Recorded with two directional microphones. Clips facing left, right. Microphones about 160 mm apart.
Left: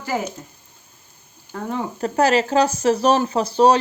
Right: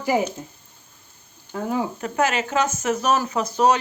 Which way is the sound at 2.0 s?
35° left (ahead or behind).